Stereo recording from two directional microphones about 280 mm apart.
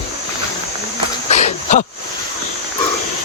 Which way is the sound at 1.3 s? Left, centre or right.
Left.